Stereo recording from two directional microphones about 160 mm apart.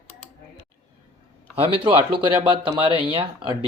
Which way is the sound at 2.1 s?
30° right (ahead or behind).